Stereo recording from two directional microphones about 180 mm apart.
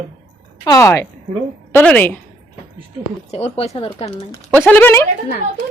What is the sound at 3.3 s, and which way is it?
Speech, 35° left (ahead or behind).